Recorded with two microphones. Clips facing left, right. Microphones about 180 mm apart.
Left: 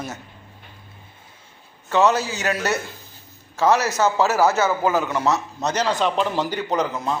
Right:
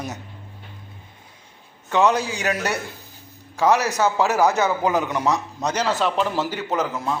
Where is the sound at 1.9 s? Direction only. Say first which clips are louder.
Left 1 dB; 15° right (ahead or behind).